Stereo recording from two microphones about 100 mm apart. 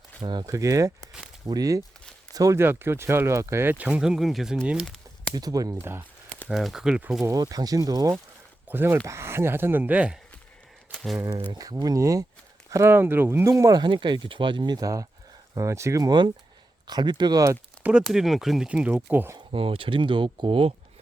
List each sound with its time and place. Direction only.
0.2 s speech: 50° right (ahead or behind)
0.4 s speech: 35° right (ahead or behind); by 4.9 s 10° right (ahead or behind)
5.3 s speech: 40° right (ahead or behind)
5.7 s speech: 25° right (ahead or behind)
6.5 s speech: centre (ahead or behind)
7.3 s speech: 40° right (ahead or behind)
8.7 s speech: 20° right (ahead or behind)
10.9 s a sound: centre (ahead or behind)
11.5 s speech: 40° right (ahead or behind)
13.8 s speech: 50° right (ahead or behind); by 16.1 s 35° right (ahead or behind)
16.8 s speech: 45° right (ahead or behind)
18.0 s speech: 5° right (ahead or behind)
19.5 s speech: 65° right (ahead or behind)